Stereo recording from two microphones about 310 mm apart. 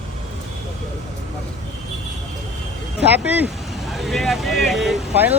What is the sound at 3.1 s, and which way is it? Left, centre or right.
Speech, centre.